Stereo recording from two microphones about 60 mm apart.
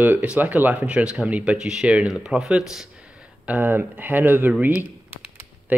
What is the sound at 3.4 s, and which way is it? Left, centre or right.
Speech, right.